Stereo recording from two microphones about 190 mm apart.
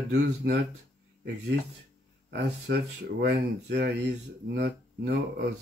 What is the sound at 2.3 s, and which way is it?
Speech, 65° right (ahead or behind).